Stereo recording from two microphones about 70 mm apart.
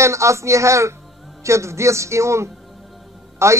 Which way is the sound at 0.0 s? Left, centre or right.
Right.